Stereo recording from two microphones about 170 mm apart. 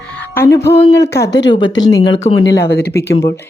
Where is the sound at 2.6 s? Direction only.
70° left (ahead or behind).